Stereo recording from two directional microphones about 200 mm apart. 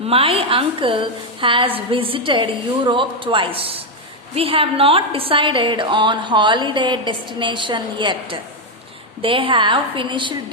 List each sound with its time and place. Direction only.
0.1 s a woman's voice: 30° right (ahead or behind)